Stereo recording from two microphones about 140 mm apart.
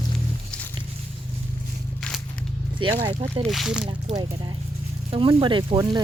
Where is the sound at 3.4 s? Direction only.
Centre (ahead or behind).